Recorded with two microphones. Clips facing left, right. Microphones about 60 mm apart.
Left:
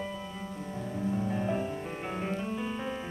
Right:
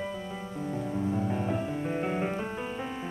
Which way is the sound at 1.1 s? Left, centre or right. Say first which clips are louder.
Right 1 dB; centre.